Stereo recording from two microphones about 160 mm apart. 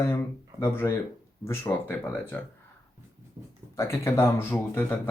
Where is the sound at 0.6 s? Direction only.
15° left (ahead or behind).